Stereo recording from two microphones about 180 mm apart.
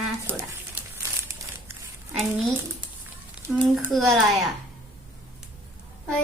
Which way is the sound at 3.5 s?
Centre (ahead or behind).